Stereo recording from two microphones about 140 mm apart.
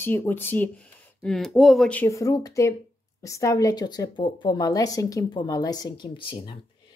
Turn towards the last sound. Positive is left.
turn(degrees=35)  # may be behind; listen again after turning